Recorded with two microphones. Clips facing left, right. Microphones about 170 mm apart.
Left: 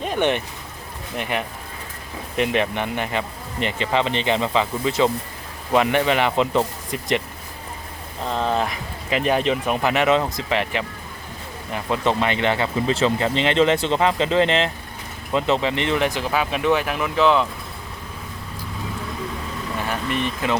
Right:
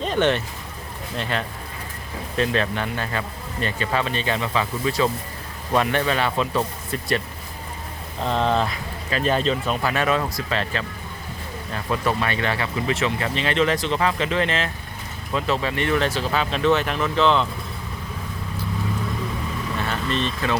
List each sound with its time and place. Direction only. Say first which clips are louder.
0.0 s speech: even; 10° left (ahead or behind)
8.3 s speech: right 1 dB; 5° left (ahead or behind)
19.7 s speech: left 1 dB; 10° left (ahead or behind)